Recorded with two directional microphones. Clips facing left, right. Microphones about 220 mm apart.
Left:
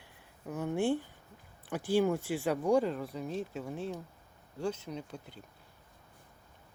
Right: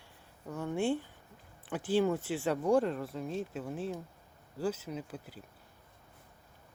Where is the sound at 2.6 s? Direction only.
Centre (ahead or behind).